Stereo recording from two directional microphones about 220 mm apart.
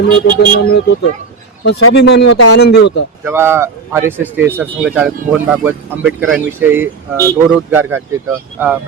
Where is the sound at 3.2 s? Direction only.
10° right (ahead or behind).